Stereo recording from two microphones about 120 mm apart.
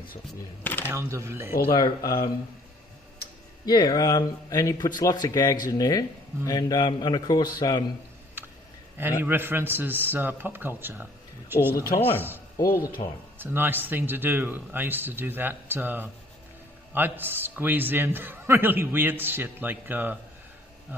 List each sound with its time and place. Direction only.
0.8 s speech: 25° right (ahead or behind)
1.7 s speech: 40° left (ahead or behind)
3.6 s speech: 35° left (ahead or behind)
8.9 s a man's voice: 15° right (ahead or behind)
13.0 s speech: 40° left (ahead or behind)
13.4 s a man's voice: 15° right (ahead or behind)